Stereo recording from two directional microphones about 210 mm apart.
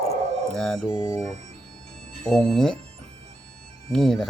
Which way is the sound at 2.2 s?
5° left (ahead or behind).